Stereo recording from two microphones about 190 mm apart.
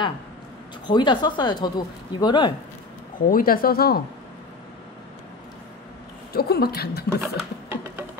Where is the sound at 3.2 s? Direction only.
50° left (ahead or behind).